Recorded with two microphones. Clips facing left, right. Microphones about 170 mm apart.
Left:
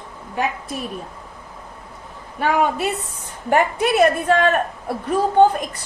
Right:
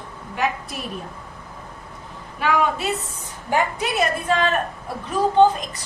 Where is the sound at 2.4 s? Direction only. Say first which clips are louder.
Left 2 dB; 50° left (ahead or behind).